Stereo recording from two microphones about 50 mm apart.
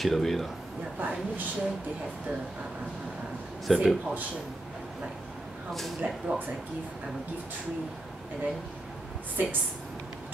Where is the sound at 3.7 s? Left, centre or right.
Centre.